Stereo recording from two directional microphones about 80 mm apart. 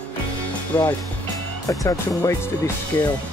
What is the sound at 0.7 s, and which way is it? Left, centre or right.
Speech, left.